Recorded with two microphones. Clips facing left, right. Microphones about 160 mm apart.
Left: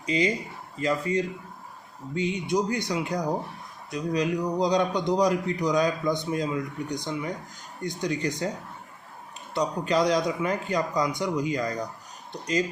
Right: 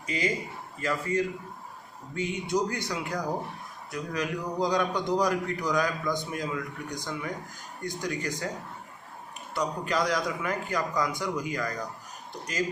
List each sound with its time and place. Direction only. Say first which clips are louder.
0.0 s a man's voice: left 4 dB; 20° left (ahead or behind)
9.6 s a man's voice: left 4 dB; 20° left (ahead or behind)